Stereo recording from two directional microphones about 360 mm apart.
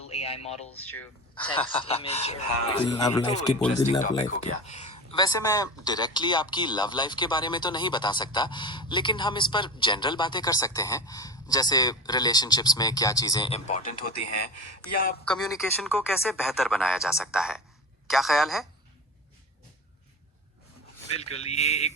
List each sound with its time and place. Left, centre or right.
0.0 s a sound: centre
0.4 s speech: centre
0.8 s speech: left
1.5 s speech: centre
14.2 s a man's voice: left
15.3 s speech: centre
21.1 s speech: centre